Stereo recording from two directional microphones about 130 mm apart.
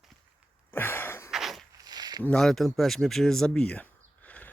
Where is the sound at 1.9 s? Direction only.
30° right (ahead or behind).